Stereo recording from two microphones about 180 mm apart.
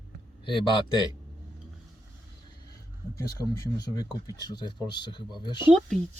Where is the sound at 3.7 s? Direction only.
20° left (ahead or behind).